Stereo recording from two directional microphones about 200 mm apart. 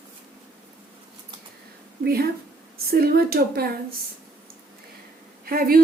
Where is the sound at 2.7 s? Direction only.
50° right (ahead or behind).